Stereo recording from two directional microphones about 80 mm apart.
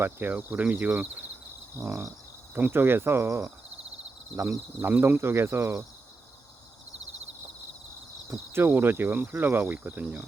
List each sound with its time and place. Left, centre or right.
0.0 s speech: right
1.9 s speech: right
2.6 s speech: right
4.8 s speech: right
8.3 s speech: right